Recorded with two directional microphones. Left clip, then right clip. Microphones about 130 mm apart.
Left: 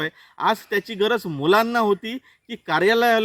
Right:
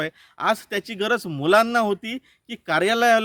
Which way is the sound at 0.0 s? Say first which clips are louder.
Left 2 dB; 45° right (ahead or behind).